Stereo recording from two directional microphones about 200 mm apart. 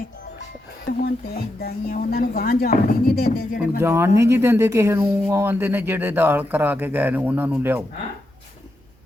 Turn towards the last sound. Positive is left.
turn(degrees=-10)  # may be behind; listen again after turning